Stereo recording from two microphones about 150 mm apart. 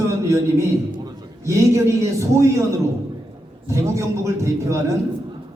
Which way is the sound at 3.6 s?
20° right (ahead or behind).